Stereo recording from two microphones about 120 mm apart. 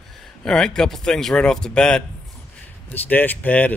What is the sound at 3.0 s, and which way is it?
Speech, 15° left (ahead or behind).